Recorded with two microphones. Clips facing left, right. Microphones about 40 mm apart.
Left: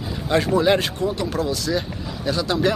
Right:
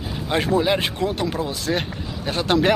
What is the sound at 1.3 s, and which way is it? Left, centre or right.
Speech, right.